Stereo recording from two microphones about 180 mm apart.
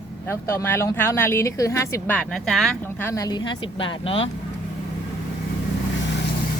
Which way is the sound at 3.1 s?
20° left (ahead or behind).